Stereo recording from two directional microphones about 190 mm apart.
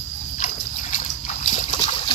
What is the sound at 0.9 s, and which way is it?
Splash, 40° left (ahead or behind).